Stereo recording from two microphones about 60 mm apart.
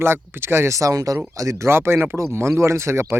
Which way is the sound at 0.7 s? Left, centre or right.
Right.